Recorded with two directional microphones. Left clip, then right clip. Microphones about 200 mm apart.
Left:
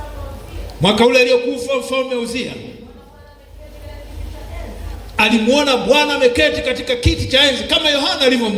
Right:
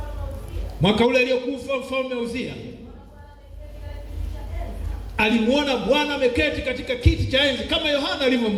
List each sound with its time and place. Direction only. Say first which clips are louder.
0.8 s a man's voice: left 7 dB; 45° left (ahead or behind)
5.1 s a man's voice: left 6 dB; 45° left (ahead or behind)